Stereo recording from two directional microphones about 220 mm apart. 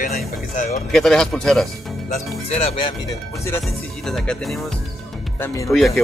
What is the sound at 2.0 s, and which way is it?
Speech, 30° left (ahead or behind).